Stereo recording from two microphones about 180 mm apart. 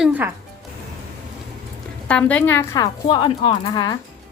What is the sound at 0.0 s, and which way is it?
Speech, 10° right (ahead or behind).